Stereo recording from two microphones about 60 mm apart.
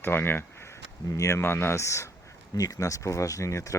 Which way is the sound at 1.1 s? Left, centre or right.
Left.